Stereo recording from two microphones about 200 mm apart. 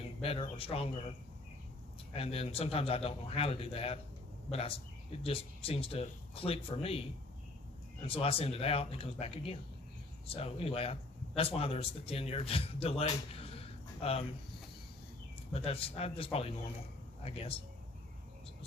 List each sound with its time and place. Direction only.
0.0 s speech: 30° left (ahead or behind)
2.1 s a man's voice: 30° left (ahead or behind)
8.0 s a man's voice: 30° left (ahead or behind)
15.5 s a man's voice: 30° left (ahead or behind)